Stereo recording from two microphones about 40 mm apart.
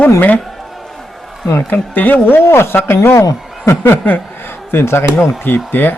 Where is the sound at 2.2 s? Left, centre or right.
Left.